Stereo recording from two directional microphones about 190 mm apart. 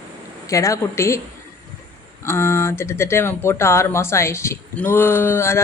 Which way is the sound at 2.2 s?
15° left (ahead or behind).